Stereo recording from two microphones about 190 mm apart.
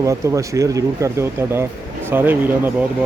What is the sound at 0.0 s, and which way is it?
Speech, 15° right (ahead or behind).